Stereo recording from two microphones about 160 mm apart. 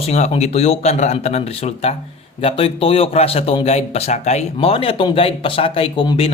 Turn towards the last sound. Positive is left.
turn(degrees=35)  # may be behind; listen again after turning